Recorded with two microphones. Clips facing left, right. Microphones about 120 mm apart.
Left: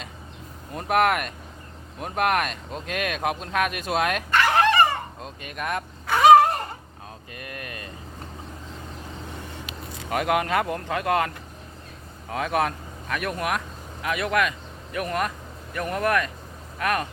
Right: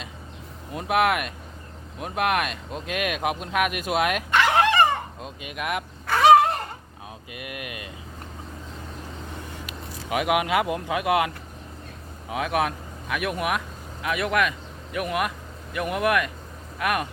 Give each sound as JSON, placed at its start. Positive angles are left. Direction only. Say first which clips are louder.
{"t": 0.7, "sound": "speech", "louder": "left 1 dB", "side_deg": -5}
{"t": 4.3, "sound": "dog", "louder": "left 1 dB", "side_deg": -20}
{"t": 5.2, "sound": "speech", "louder": "even", "side_deg": -5}
{"t": 6.1, "sound": "a sound", "louder": "left 1 dB", "side_deg": 0}
{"t": 7.3, "sound": "speech", "louder": "right 2 dB", "side_deg": -10}
{"t": 10.1, "sound": "speech", "louder": "right 1 dB", "side_deg": -5}
{"t": 12.3, "sound": "speech", "louder": "even", "side_deg": -5}